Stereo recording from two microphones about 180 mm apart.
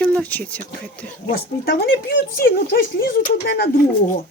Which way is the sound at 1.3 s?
60° left (ahead or behind).